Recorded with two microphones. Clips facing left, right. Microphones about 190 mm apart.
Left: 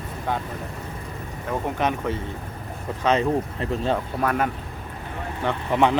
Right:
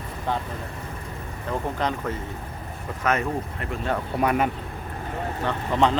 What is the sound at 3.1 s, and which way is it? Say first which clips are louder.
Speech: left 5 dB; 30° left (ahead or behind).